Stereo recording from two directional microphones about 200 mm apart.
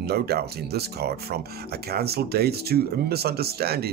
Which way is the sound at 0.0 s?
50° right (ahead or behind).